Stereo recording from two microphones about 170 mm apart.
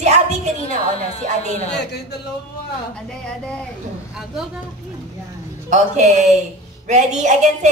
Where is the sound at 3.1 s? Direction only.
5° left (ahead or behind).